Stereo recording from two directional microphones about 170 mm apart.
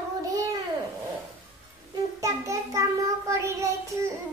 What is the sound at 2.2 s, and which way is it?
Child singing, 20° right (ahead or behind).